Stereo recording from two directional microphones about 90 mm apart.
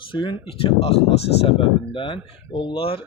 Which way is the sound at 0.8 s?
90° left.